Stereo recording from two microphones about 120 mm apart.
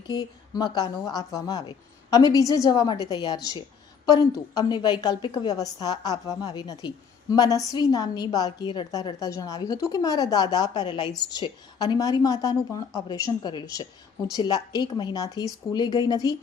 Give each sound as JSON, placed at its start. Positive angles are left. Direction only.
{"t": 0.1, "sound": "a woman's voice", "side_deg": 35}